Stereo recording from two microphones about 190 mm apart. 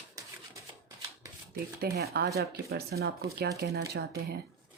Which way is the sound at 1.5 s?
55° right (ahead or behind).